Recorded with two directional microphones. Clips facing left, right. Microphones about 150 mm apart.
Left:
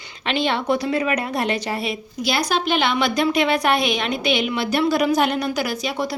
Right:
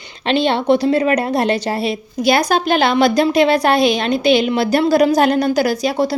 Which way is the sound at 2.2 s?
50° right (ahead or behind).